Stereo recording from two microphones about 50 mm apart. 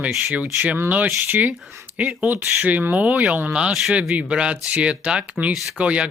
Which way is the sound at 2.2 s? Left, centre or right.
Right.